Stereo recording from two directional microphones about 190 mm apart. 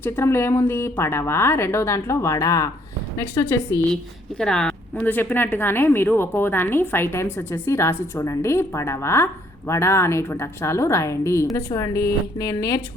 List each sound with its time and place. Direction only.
0.0 s a woman's voice: 15° left (ahead or behind)